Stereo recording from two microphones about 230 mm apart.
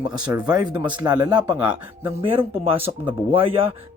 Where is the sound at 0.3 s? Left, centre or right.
Centre.